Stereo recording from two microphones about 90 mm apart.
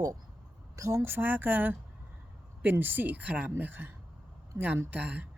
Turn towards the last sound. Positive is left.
turn(degrees=-15)  # may be behind; listen again after turning